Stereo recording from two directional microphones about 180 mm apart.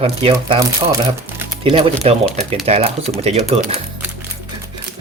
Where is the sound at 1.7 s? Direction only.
35° right (ahead or behind).